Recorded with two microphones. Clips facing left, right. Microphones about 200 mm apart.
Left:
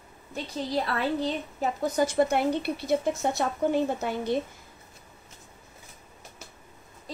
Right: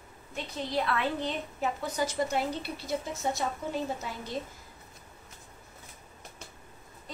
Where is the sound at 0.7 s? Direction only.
35° left (ahead or behind).